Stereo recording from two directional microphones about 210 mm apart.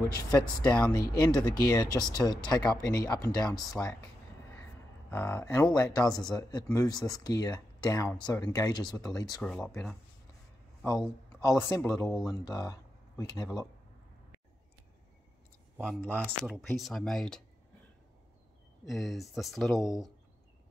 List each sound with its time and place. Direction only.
0.3 s speech: 5° left (ahead or behind)
0.9 s speech: 15° left (ahead or behind)
5.1 s speech: 10° left (ahead or behind)
15.8 s speech: 5° left (ahead or behind)
18.9 s speech: centre (ahead or behind)